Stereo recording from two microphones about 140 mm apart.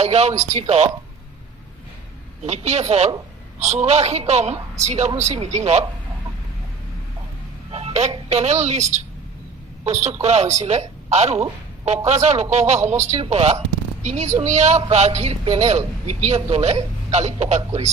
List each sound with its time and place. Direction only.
0.0 s a woman's voice: 50° right (ahead or behind)
2.4 s a woman's voice: 50° right (ahead or behind)
7.7 s a sound: 50° right (ahead or behind)
8.1 s a woman's voice: 50° right (ahead or behind)